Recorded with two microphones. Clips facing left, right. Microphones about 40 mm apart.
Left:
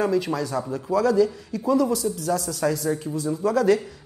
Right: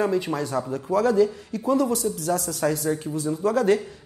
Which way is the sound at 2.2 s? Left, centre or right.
Right.